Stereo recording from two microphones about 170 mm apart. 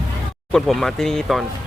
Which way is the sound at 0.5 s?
Centre (ahead or behind).